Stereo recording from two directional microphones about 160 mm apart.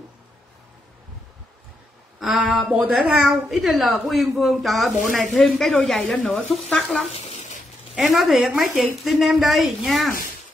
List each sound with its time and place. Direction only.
2.1 s a woman's voice: 5° right (ahead or behind)
7.2 s a sound: 45° left (ahead or behind)
7.9 s a woman's voice: centre (ahead or behind)